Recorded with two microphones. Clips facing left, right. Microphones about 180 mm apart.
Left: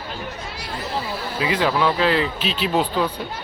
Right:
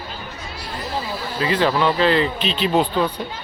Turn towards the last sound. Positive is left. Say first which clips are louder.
# right 2 dB
turn(degrees=5)  # may be behind; listen again after turning